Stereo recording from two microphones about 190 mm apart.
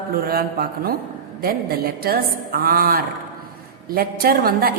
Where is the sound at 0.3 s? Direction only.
50° right (ahead or behind).